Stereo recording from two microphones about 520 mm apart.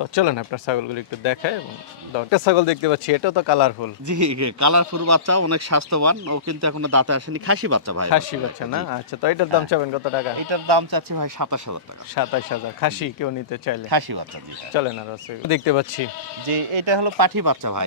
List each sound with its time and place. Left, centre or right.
0.0 s speech: left
4.1 s speech: right
8.9 s speech: left
10.5 s speech: right
12.2 s speech: left
13.8 s speech: right
14.7 s speech: left
15.4 s speech: left
16.4 s speech: right